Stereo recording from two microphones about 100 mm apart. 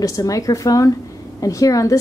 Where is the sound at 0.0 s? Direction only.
35° left (ahead or behind).